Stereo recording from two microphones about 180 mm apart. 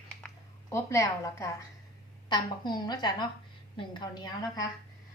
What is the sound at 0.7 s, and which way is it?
A woman's voice, 15° left (ahead or behind).